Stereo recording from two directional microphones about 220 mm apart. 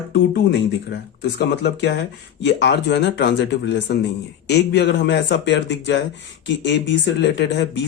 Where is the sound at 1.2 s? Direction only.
50° left (ahead or behind).